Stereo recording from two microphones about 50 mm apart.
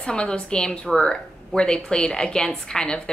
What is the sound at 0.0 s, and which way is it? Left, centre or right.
A woman's voice, centre.